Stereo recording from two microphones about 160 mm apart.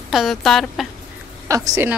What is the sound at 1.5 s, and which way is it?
Speech, 20° right (ahead or behind).